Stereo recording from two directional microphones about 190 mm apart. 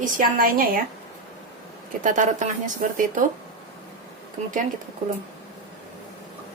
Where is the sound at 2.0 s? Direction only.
40° right (ahead or behind).